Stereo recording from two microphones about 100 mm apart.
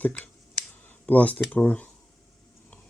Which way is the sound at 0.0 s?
15° left (ahead or behind).